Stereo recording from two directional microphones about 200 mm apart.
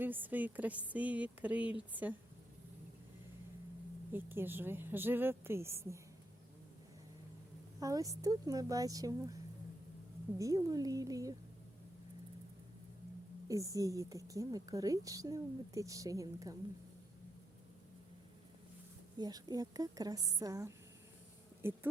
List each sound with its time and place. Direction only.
0.0 s a woman's voice: 10° right (ahead or behind)
4.1 s a woman's voice: 10° right (ahead or behind)
7.8 s a woman's voice: 15° right (ahead or behind)
13.5 s a woman's voice: 15° right (ahead or behind)
19.2 s a woman's voice: 20° right (ahead or behind)